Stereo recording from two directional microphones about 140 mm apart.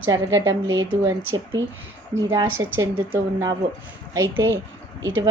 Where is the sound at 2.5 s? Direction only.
20° right (ahead or behind).